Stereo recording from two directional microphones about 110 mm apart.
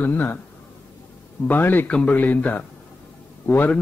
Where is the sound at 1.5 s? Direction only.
15° left (ahead or behind).